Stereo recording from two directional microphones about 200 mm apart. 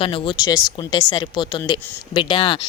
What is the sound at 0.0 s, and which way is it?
Speech, 25° left (ahead or behind).